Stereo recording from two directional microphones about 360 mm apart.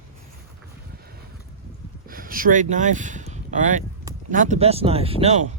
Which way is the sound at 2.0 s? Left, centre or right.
Right.